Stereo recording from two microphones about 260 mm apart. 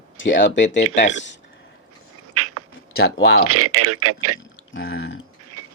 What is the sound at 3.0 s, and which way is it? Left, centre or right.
Speech, left.